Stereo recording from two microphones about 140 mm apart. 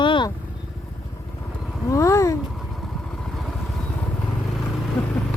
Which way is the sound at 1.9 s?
20° left (ahead or behind).